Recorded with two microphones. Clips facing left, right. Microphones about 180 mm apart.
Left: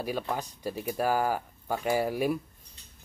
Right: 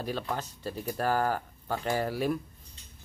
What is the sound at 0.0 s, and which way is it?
Speech, 10° left (ahead or behind).